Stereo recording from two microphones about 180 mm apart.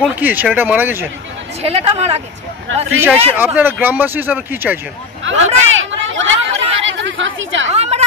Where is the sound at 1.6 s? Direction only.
35° right (ahead or behind).